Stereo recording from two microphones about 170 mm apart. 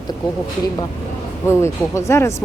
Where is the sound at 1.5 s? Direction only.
15° left (ahead or behind).